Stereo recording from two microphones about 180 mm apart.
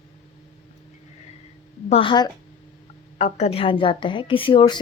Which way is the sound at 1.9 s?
25° left (ahead or behind).